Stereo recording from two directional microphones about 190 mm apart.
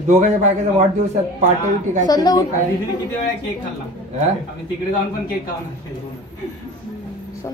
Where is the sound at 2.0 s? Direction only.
20° left (ahead or behind).